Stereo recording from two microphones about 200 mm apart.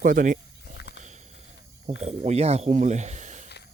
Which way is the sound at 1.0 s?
35° right (ahead or behind).